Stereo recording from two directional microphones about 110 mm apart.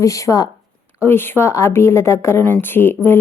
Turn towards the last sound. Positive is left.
turn(degrees=20)  # may be behind; listen again after turning